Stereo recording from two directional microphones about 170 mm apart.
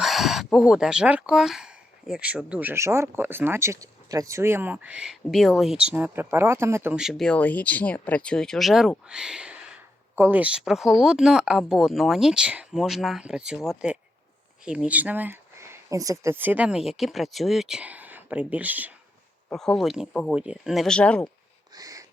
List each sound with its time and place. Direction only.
0.0 s speech: centre (ahead or behind)
19.5 s speech: 5° left (ahead or behind)
21.8 s a sound: 20° right (ahead or behind)